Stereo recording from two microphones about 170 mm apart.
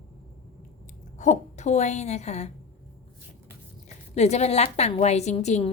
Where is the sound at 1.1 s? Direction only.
45° left (ahead or behind).